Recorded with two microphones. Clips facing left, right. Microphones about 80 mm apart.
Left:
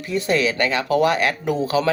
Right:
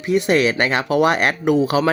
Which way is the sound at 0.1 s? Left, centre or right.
Right.